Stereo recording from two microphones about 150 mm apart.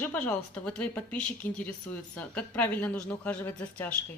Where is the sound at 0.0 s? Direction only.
10° left (ahead or behind).